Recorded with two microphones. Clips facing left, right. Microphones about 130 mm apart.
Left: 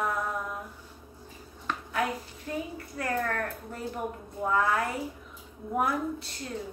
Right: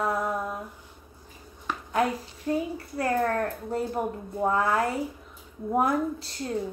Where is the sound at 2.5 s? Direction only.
35° right (ahead or behind).